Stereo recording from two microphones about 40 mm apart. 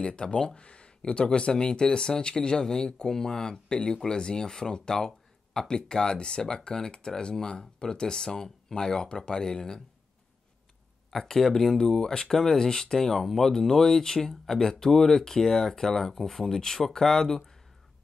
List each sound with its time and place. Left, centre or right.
0.0 s speech: left
11.1 s speech: centre